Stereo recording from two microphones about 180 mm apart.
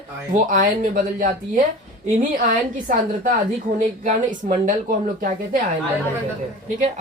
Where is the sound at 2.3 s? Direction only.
50° right (ahead or behind).